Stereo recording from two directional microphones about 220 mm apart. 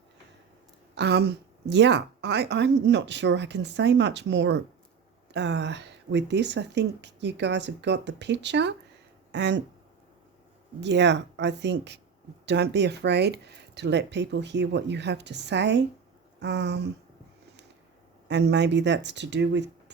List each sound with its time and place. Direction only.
0.9 s speech: 50° right (ahead or behind)
10.8 s speech: 50° right (ahead or behind)
18.3 s speech: 50° right (ahead or behind)